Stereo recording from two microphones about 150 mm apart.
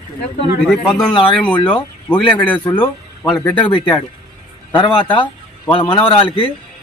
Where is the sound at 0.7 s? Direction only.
5° left (ahead or behind).